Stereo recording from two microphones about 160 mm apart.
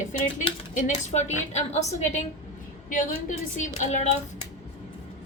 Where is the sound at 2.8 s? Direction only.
55° left (ahead or behind).